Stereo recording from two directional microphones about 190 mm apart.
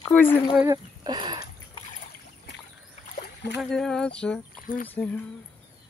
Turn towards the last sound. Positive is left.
turn(degrees=10)  # may be behind; listen again after turning